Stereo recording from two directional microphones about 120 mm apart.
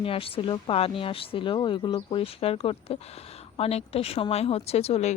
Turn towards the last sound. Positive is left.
turn(degrees=60)  # may be behind; listen again after turning